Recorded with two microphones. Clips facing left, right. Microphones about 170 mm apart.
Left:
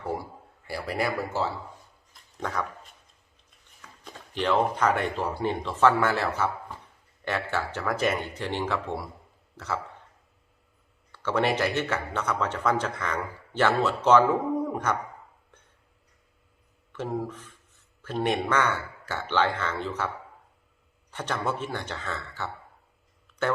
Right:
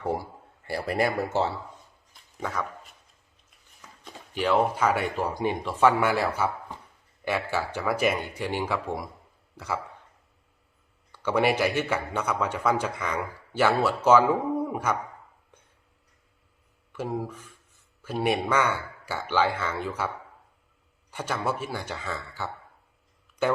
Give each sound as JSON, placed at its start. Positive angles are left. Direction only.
{"t": 1.0, "sound": "speech", "side_deg": -25}
{"t": 2.4, "sound": "speech", "side_deg": 0}
{"t": 4.4, "sound": "a man's voice", "side_deg": -10}
{"t": 11.1, "sound": "a man's voice", "side_deg": -10}
{"t": 16.9, "sound": "a man's voice", "side_deg": -10}
{"t": 21.1, "sound": "a man's voice", "side_deg": -10}